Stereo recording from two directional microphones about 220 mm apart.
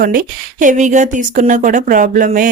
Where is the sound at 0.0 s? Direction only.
40° right (ahead or behind).